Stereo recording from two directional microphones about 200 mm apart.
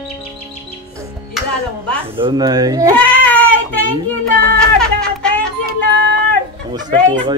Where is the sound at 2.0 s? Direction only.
25° right (ahead or behind).